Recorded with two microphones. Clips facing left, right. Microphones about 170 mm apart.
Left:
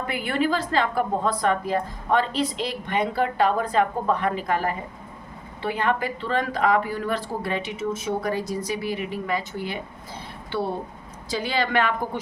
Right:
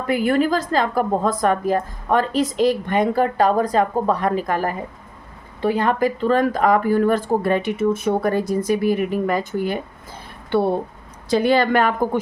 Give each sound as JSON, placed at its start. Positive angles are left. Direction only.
{"t": 0.1, "sound": "a woman's voice", "side_deg": -40}
{"t": 11.3, "sound": "a woman's voice", "side_deg": -55}